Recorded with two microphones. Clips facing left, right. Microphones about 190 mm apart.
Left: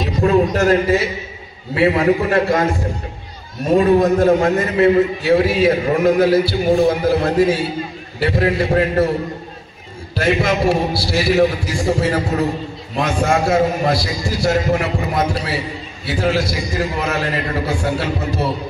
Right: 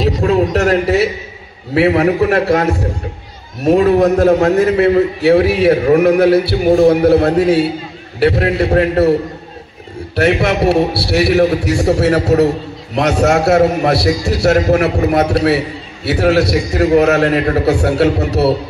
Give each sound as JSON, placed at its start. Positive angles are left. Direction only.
{"t": 0.3, "sound": "a man's voice", "side_deg": -70}
{"t": 3.8, "sound": "a man's voice", "side_deg": -65}
{"t": 10.1, "sound": "a man's voice", "side_deg": -65}